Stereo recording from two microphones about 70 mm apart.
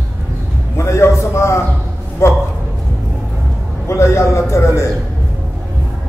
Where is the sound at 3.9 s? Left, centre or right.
Left.